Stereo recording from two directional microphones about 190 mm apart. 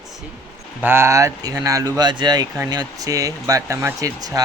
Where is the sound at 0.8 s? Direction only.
10° right (ahead or behind).